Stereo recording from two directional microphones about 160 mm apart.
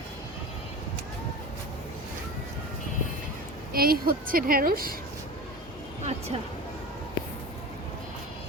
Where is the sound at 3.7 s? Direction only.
70° right (ahead or behind).